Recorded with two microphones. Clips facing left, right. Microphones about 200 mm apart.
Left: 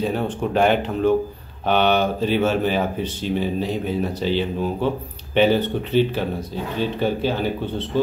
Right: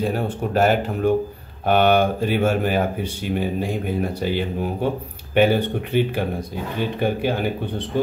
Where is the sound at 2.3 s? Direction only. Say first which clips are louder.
Left 1 dB; 50° right (ahead or behind).